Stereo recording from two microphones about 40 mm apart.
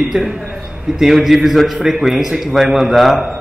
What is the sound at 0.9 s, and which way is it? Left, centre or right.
A man's voice, centre.